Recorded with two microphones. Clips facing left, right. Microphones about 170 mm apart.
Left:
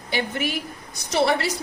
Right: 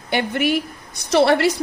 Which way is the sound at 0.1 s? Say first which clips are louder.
Right 6 dB; 65° right (ahead or behind).